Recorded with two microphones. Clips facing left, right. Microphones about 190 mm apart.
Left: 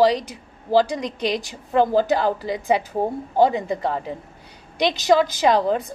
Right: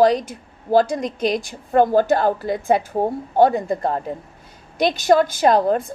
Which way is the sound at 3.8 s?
50° right (ahead or behind).